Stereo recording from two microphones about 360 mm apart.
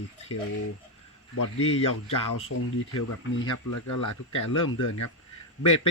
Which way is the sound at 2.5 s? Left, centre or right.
Left.